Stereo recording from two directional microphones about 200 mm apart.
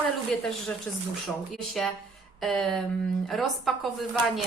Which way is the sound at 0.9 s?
Centre (ahead or behind).